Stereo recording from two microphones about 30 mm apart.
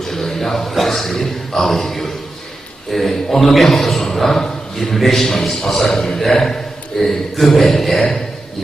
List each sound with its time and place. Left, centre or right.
0.0 s a man's voice: centre
4.4 s a sound: centre
4.9 s a man's voice: centre